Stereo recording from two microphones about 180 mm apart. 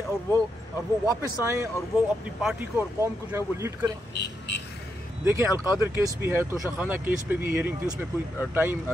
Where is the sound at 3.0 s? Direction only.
15° right (ahead or behind).